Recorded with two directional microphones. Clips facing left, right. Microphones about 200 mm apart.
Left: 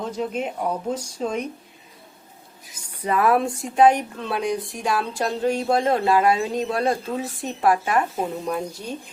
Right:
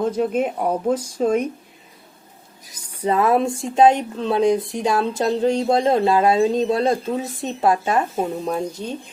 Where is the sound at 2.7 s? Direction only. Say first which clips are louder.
Right 4 dB; 25° right (ahead or behind).